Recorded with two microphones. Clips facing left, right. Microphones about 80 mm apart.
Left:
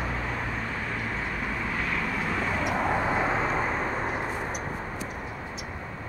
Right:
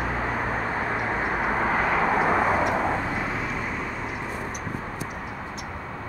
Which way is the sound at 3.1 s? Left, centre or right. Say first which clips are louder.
Left 3 dB; left.